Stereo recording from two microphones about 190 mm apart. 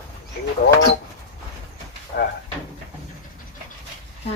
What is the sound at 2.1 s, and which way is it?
Drawer open or close, 65° left (ahead or behind).